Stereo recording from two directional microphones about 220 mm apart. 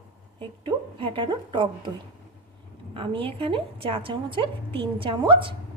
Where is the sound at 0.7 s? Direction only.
20° right (ahead or behind).